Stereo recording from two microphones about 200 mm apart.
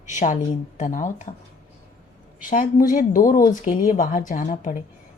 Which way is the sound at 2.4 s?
40° left (ahead or behind).